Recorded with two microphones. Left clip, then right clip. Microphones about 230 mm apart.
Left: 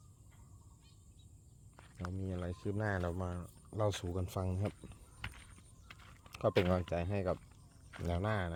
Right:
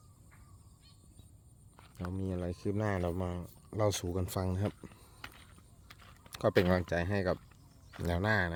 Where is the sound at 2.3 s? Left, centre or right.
Right.